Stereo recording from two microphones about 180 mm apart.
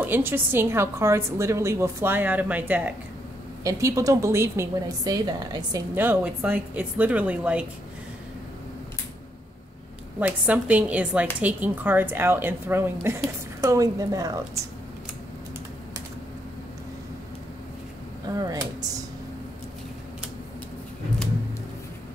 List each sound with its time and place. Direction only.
0.0 s a woman's voice: 10° right (ahead or behind)
10.2 s a woman's voice: 10° right (ahead or behind)
18.3 s speech: 20° right (ahead or behind)